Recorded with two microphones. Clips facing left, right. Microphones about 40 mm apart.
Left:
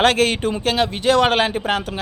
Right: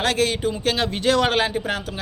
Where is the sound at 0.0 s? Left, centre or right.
Left.